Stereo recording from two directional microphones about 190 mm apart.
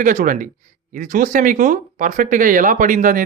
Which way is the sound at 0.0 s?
40° right (ahead or behind).